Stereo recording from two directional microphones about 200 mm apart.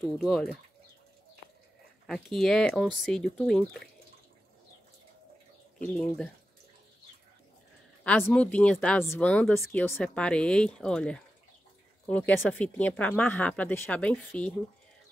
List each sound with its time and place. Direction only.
0.2 s speech: centre (ahead or behind)
2.0 s speech: centre (ahead or behind)
5.9 s speech: centre (ahead or behind)
8.0 s speech: 5° left (ahead or behind)